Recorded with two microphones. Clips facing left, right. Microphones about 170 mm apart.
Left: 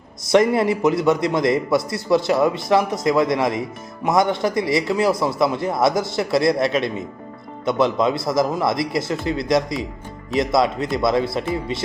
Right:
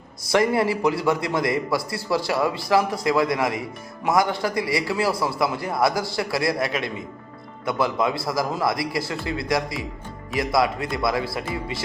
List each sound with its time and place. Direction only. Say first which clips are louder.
0.3 s a man's voice: left 4 dB; 20° left (ahead or behind)